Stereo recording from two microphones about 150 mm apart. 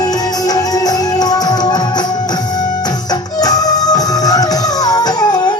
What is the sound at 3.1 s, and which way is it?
Music, 25° left (ahead or behind).